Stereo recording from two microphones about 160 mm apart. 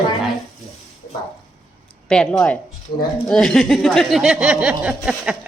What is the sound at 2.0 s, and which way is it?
A woman's voice, 5° left (ahead or behind).